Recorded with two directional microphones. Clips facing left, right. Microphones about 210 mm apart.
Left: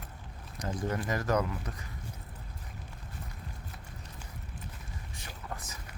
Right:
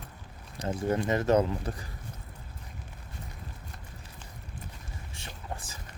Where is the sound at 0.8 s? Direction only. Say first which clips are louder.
Right 5 dB; 25° right (ahead or behind).